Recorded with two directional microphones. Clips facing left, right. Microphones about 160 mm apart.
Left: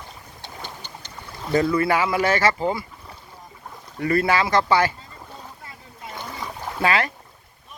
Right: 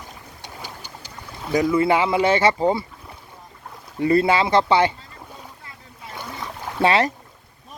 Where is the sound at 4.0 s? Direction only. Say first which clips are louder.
Right 3 dB; 25° right (ahead or behind).